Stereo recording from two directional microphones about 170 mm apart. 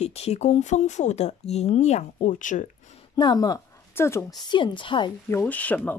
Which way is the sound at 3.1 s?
25° left (ahead or behind).